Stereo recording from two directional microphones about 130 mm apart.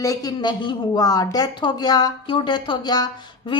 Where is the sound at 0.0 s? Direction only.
25° left (ahead or behind).